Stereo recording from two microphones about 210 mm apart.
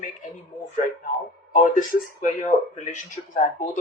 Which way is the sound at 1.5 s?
45° left (ahead or behind).